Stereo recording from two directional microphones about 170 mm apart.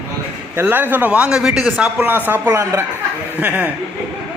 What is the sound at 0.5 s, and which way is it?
Speech, 10° right (ahead or behind).